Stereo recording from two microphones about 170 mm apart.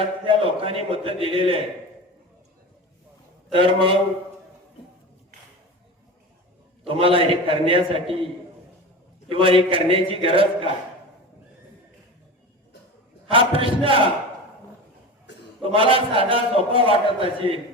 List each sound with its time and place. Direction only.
0.3 s a man's voice: 30° right (ahead or behind)
3.5 s a man's voice: 30° right (ahead or behind)
6.8 s a man's voice: 30° right (ahead or behind)
9.3 s a man's voice: 30° right (ahead or behind)
13.2 s a man's voice: 30° right (ahead or behind)
15.7 s a man's voice: 30° right (ahead or behind)